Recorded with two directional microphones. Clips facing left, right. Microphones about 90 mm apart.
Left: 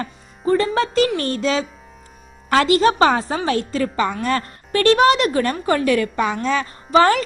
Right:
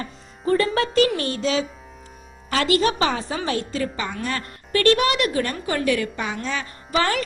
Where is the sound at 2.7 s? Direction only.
35° left (ahead or behind).